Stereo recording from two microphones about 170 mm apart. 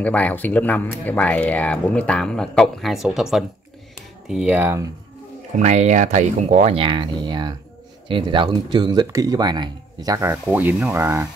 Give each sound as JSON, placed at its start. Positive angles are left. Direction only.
{"t": 0.0, "sound": "speech", "side_deg": 10}
{"t": 5.6, "sound": "speech", "side_deg": -45}